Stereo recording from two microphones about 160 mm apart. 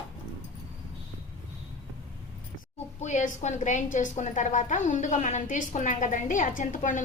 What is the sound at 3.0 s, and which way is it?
A woman's voice, 50° left (ahead or behind).